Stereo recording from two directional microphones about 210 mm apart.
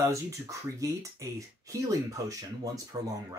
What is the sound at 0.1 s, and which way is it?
Speech, 15° right (ahead or behind).